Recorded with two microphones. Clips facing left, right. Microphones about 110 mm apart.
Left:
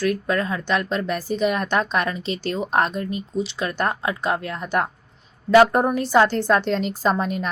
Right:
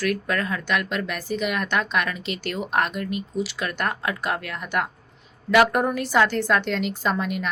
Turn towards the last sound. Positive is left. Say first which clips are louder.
# left 3 dB
turn(degrees=35)  # may be behind; listen again after turning